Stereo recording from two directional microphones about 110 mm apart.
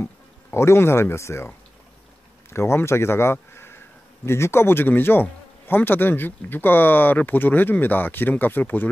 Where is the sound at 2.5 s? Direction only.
25° left (ahead or behind).